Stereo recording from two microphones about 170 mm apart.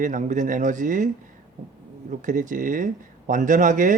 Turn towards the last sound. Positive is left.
turn(degrees=-50)  # may be behind; listen again after turning